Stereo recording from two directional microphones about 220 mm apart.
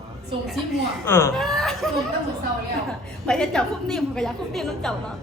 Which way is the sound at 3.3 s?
5° left (ahead or behind).